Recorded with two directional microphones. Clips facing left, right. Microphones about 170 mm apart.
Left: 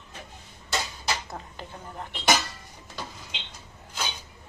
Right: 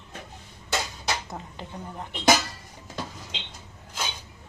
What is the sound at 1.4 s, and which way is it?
Speech, 15° right (ahead or behind).